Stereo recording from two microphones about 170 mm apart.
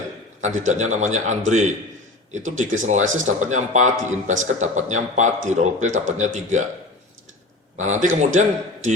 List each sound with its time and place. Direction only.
0.4 s a man's voice: 45° right (ahead or behind)
7.8 s a man's voice: 45° right (ahead or behind)